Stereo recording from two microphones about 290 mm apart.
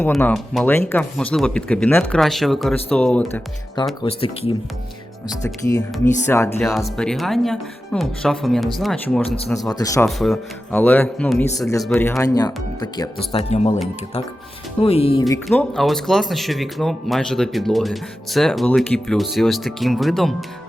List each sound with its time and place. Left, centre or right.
0.0 s speech: centre
4.0 s speech: centre
10.1 s speech: centre; by 13.7 s left
14.8 s speech: centre
15.4 s speech: centre